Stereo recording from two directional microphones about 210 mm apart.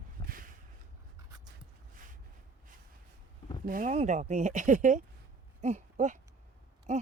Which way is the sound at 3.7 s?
35° right (ahead or behind).